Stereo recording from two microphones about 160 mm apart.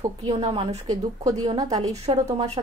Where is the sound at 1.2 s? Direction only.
20° right (ahead or behind).